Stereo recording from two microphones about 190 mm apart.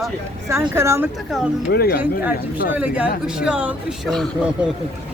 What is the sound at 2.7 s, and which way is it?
Speech, 5° right (ahead or behind).